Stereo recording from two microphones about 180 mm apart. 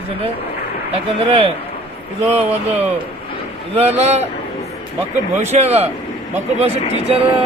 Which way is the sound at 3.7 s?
35° right (ahead or behind).